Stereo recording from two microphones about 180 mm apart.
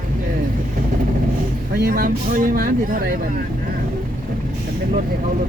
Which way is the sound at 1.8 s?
55° right (ahead or behind).